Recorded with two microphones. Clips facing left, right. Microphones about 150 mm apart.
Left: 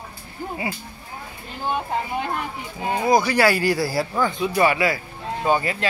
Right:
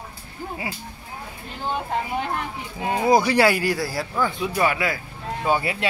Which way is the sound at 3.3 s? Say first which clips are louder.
Even; 25° right (ahead or behind).